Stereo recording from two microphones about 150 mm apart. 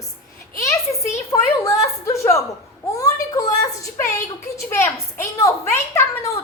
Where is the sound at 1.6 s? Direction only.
20° left (ahead or behind).